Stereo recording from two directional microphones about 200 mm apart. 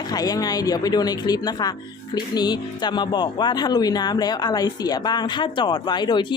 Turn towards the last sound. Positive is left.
turn(degrees=20)  # may be behind; listen again after turning